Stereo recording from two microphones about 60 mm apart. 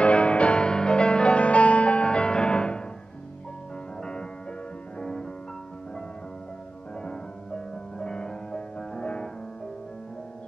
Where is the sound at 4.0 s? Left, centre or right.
Centre.